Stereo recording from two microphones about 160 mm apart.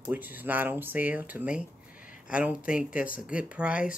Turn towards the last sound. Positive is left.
turn(degrees=-5)  # may be behind; listen again after turning